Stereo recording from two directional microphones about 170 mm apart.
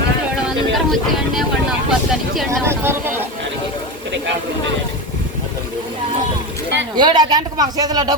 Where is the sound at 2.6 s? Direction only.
15° right (ahead or behind).